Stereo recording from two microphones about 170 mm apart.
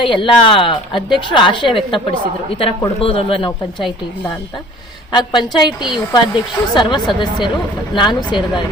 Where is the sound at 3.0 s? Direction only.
35° left (ahead or behind).